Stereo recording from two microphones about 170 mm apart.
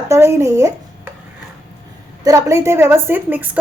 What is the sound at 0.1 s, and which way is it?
Speech, 15° right (ahead or behind).